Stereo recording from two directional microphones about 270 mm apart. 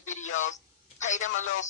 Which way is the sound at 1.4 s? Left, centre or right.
Left.